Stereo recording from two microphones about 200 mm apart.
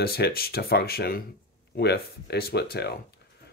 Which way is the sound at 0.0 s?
50° left (ahead or behind).